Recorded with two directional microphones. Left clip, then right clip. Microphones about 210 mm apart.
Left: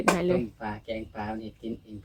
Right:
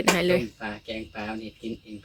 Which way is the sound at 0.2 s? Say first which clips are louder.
Right 4 dB; 5° left (ahead or behind).